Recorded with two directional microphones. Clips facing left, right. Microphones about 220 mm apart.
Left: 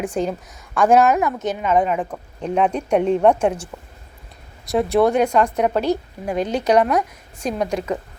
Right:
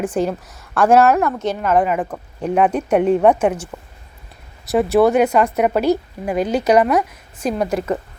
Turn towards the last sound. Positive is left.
turn(degrees=-5)  # may be behind; listen again after turning